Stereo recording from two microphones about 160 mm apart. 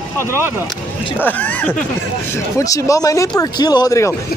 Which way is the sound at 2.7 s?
20° left (ahead or behind).